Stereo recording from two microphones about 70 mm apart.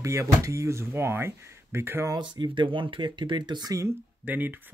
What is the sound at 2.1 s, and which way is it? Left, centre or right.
Speech, right.